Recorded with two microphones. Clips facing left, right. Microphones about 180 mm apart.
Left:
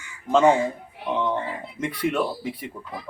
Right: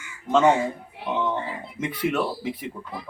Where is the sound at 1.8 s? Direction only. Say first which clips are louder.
Even; 5° right (ahead or behind).